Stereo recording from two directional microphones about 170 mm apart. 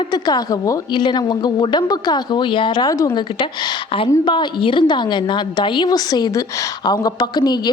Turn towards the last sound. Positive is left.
turn(degrees=25)  # may be behind; listen again after turning